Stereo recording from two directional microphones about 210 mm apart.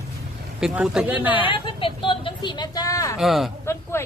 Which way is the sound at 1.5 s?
25° left (ahead or behind).